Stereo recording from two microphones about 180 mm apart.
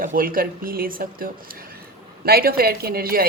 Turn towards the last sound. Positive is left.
turn(degrees=-55)  # may be behind; listen again after turning